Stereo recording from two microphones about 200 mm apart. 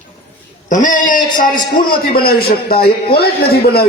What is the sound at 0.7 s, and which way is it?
A man's voice, 40° left (ahead or behind).